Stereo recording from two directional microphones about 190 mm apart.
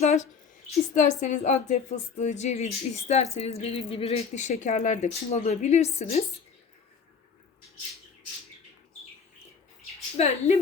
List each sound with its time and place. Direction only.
0.0 s a sound: 40° left (ahead or behind)
0.9 s speech: 40° left (ahead or behind)
10.2 s speech: 35° left (ahead or behind)